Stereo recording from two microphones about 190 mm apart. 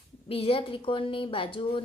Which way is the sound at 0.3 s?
30° left (ahead or behind).